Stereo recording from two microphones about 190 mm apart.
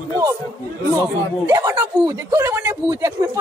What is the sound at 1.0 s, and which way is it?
A man's voice, 15° right (ahead or behind).